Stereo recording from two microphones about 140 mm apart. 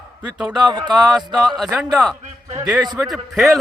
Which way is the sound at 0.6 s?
30° right (ahead or behind).